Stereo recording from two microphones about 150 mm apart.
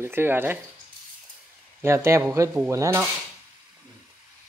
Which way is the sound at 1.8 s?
20° right (ahead or behind).